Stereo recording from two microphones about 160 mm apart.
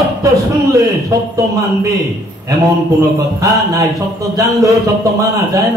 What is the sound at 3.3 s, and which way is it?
Speech, 20° right (ahead or behind).